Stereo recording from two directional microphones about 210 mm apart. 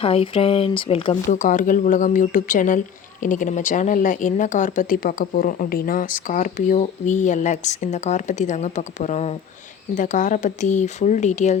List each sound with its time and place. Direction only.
0.0 s speech: 25° left (ahead or behind)
1.3 s speech: 40° left (ahead or behind)